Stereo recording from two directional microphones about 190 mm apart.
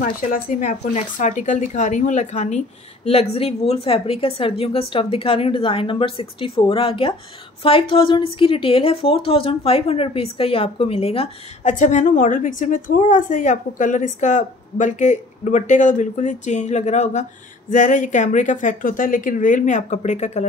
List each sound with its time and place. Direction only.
0.0 s a woman's voice: 45° left (ahead or behind)